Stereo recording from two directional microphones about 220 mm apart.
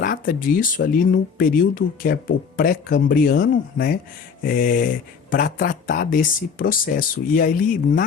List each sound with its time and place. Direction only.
0.0 s speech: 40° left (ahead or behind)